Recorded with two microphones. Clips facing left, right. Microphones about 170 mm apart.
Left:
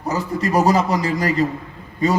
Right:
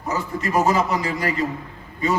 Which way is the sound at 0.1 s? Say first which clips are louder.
Left 3 dB; 35° left (ahead or behind).